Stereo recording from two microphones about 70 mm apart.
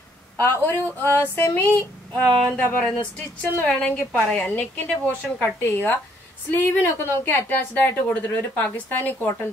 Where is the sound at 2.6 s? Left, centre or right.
Left.